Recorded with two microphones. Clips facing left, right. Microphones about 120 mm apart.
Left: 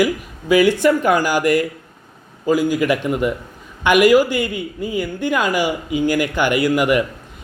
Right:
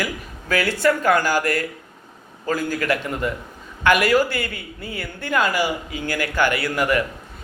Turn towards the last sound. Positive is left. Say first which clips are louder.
# left 5 dB
turn(degrees=15)  # may be behind; listen again after turning